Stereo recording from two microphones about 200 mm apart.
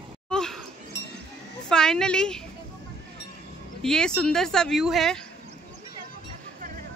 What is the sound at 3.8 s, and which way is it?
Speech, 5° left (ahead or behind).